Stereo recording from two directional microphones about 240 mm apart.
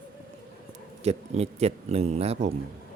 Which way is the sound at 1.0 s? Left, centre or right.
Right.